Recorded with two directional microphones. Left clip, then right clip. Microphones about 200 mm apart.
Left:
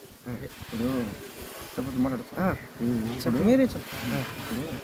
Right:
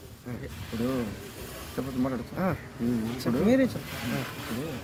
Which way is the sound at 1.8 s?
40° right (ahead or behind).